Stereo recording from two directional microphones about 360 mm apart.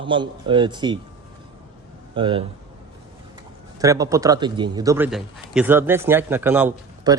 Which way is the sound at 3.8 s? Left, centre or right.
Centre.